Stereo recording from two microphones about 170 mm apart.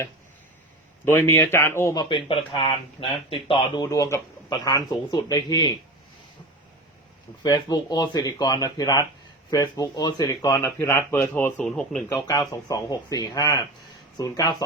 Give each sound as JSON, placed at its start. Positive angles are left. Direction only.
{"t": 1.0, "sound": "speech", "side_deg": 15}
{"t": 7.4, "sound": "speech", "side_deg": 25}
{"t": 12.0, "sound": "speech", "side_deg": 20}